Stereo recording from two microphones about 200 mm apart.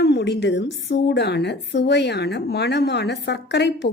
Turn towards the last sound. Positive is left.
turn(degrees=60)  # may be behind; listen again after turning